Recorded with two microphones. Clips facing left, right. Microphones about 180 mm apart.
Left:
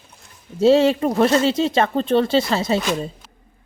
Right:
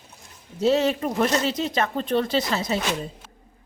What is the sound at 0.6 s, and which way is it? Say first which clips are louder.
Speech: left 6 dB; 30° left (ahead or behind).